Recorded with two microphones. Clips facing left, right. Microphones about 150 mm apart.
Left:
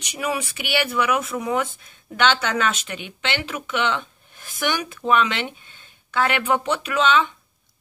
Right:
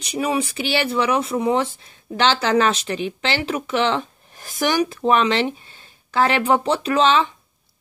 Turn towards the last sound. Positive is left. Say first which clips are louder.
# right 3 dB
turn(degrees=-35)  # may be behind; listen again after turning